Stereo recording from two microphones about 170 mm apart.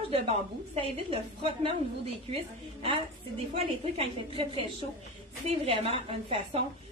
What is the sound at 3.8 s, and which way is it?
A woman's voice, 35° right (ahead or behind).